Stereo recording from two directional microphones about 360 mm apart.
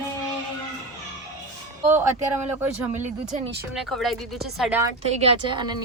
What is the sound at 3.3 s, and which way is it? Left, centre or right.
Speech, right.